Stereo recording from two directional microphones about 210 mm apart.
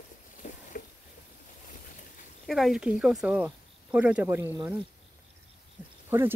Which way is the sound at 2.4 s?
Centre (ahead or behind).